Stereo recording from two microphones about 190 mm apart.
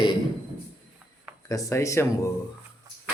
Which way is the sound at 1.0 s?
5° right (ahead or behind).